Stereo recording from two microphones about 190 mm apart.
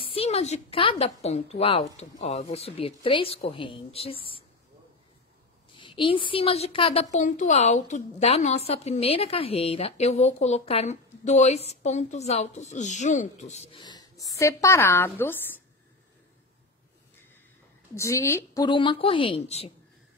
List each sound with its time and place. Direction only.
0.0 s a woman's voice: 30° left (ahead or behind)
5.8 s a woman's voice: 25° left (ahead or behind)
17.9 s a woman's voice: 15° left (ahead or behind); by 19.7 s 35° left (ahead or behind)